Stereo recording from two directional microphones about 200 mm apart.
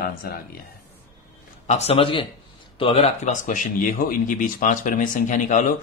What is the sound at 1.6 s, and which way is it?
A man's voice, 35° left (ahead or behind).